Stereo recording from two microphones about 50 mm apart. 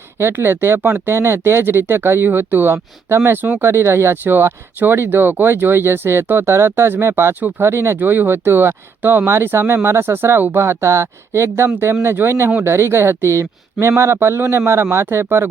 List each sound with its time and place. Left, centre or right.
0.2 s speech: right
7.9 s speech: right
9.3 s speech: right